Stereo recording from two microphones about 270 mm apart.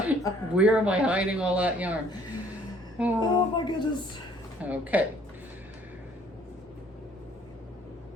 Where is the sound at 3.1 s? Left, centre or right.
Centre.